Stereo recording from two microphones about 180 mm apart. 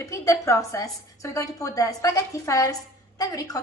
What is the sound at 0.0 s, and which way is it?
A woman's voice, 15° left (ahead or behind).